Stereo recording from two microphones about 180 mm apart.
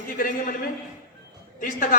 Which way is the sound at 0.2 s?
45° left (ahead or behind).